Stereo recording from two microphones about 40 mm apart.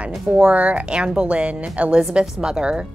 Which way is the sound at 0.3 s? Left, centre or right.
Right.